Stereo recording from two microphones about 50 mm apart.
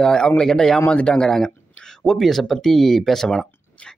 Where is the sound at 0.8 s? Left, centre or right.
Left.